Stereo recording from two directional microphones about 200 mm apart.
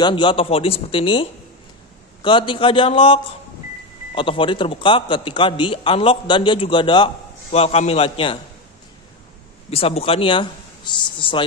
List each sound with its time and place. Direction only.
0.0 s a man's voice: 25° left (ahead or behind)
2.2 s a man's voice: 25° left (ahead or behind)
9.7 s a man's voice: 30° left (ahead or behind)